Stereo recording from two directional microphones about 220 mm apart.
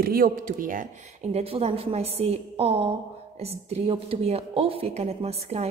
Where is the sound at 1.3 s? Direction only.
25° right (ahead or behind).